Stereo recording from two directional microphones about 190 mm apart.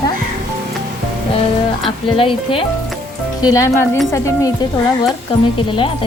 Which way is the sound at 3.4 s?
15° left (ahead or behind).